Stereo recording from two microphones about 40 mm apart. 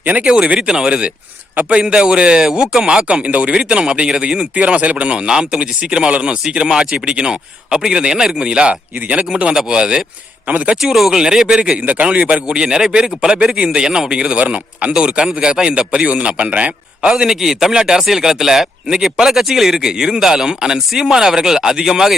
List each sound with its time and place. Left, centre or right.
0.0 s speech: right
0.3 s a man's voice: right
4.5 s a man's voice: right
9.0 s speech: right
9.3 s a man's voice: right
10.4 s speech: right
11.1 s speech: centre
11.9 s speech: right
12.5 s a man's voice: centre; by 14.9 s right
14.9 s a man's voice: right
17.1 s speech: centre